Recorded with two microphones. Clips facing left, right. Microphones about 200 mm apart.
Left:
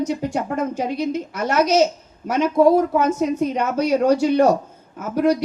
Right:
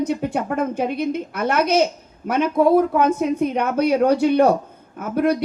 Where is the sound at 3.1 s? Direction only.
55° right (ahead or behind).